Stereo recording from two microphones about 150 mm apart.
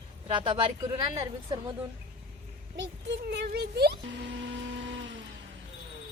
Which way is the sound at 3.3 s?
90° right.